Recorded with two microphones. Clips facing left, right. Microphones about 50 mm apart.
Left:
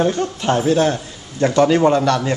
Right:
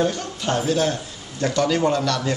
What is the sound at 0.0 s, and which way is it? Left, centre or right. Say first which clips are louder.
A man's voice: left 5 dB; left.